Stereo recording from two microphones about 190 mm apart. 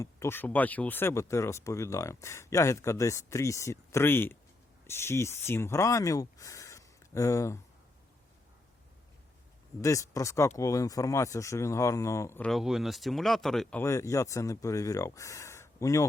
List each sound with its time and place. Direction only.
0.0 s speech: 15° left (ahead or behind)
9.8 s speech: 15° left (ahead or behind)
12.5 s speech: centre (ahead or behind); by 16.0 s 15° left (ahead or behind)